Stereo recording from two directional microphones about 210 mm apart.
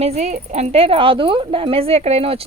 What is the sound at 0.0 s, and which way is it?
A woman's voice, 30° right (ahead or behind).